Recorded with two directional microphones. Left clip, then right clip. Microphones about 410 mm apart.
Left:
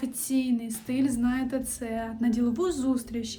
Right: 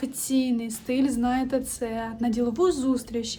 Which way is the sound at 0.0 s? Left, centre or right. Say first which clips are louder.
Right 3 dB; centre.